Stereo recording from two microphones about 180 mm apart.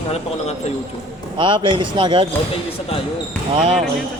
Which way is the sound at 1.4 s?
25° right (ahead or behind).